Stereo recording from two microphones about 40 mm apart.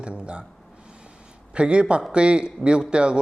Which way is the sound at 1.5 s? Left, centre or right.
Right.